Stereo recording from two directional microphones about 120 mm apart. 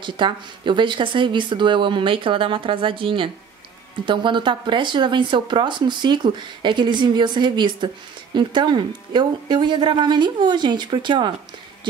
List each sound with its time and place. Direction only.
0.0 s speech: 40° right (ahead or behind)